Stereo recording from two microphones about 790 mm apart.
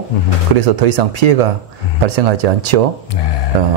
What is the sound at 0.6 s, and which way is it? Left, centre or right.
Speech, right.